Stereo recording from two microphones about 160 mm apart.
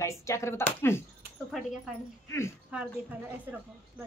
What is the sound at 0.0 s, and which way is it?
Speech, 20° left (ahead or behind).